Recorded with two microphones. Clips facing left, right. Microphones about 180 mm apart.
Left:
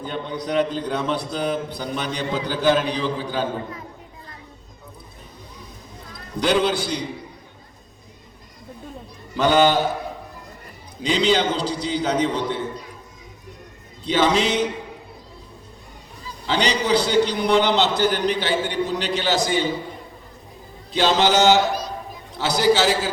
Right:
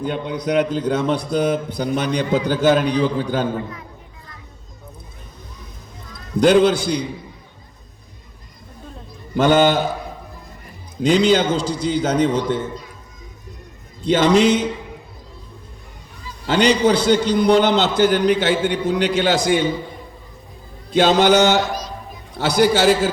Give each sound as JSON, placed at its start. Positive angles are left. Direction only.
{"t": 0.1, "sound": "a man's voice", "side_deg": -45}
{"t": 6.4, "sound": "a man's voice", "side_deg": -45}
{"t": 9.3, "sound": "a man's voice", "side_deg": -45}
{"t": 11.0, "sound": "a man's voice", "side_deg": -45}
{"t": 14.0, "sound": "a man's voice", "side_deg": -45}
{"t": 16.5, "sound": "a man's voice", "side_deg": -45}
{"t": 20.9, "sound": "a man's voice", "side_deg": -50}